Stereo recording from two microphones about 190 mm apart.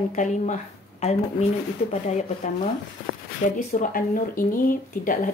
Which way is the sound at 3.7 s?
45° left (ahead or behind).